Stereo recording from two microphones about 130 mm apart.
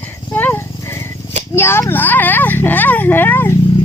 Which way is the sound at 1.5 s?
20° left (ahead or behind).